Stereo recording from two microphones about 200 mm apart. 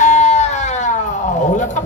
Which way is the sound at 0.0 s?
35° left (ahead or behind).